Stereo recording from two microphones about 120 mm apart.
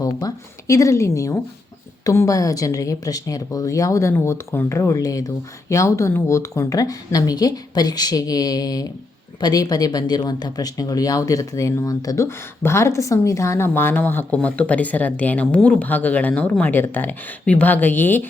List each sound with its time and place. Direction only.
0.0 s speech: 30° left (ahead or behind)